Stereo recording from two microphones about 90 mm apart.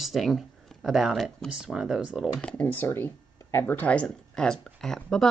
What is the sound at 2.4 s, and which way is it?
Speech, 20° left (ahead or behind).